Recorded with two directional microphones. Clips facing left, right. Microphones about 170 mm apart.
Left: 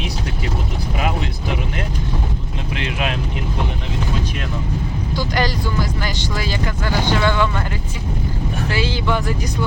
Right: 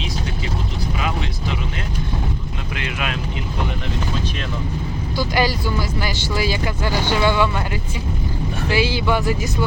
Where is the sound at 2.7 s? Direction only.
35° left (ahead or behind).